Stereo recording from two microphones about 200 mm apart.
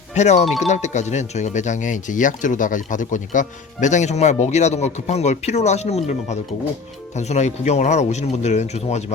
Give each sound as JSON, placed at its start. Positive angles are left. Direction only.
{"t": 0.1, "sound": "speech", "side_deg": 35}
{"t": 0.4, "sound": "speech", "side_deg": 0}
{"t": 0.7, "sound": "speech", "side_deg": 35}